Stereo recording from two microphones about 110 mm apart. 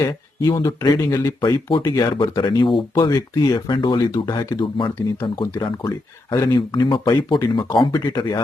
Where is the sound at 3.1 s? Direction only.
30° left (ahead or behind).